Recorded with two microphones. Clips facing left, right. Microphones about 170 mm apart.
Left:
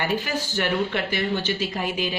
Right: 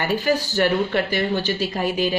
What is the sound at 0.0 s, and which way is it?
Speech, 40° right (ahead or behind).